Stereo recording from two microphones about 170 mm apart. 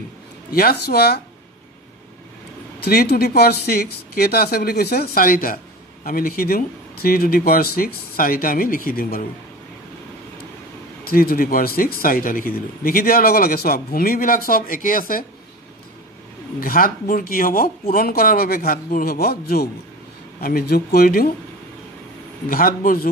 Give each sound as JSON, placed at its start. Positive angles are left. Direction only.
{"t": 0.5, "sound": "speech", "side_deg": 60}
{"t": 2.8, "sound": "speech", "side_deg": 65}
{"t": 11.1, "sound": "speech", "side_deg": 60}
{"t": 16.5, "sound": "speech", "side_deg": 60}
{"t": 22.5, "sound": "speech", "side_deg": 60}